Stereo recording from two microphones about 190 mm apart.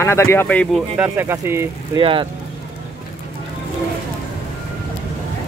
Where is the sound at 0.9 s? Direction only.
10° right (ahead or behind).